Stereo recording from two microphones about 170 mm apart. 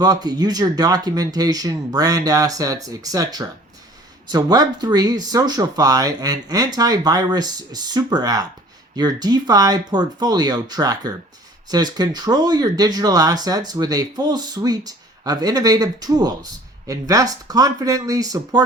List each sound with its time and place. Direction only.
0.0 s speech: 25° right (ahead or behind)